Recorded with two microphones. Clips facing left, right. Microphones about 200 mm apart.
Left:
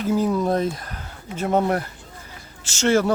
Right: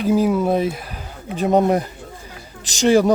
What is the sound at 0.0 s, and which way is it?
Speech, 15° right (ahead or behind).